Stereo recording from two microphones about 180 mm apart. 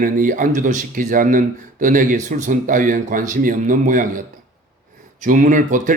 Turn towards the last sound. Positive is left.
turn(degrees=-45)  # may be behind; listen again after turning